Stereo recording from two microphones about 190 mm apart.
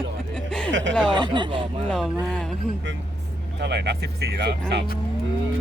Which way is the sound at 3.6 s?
60° right (ahead or behind).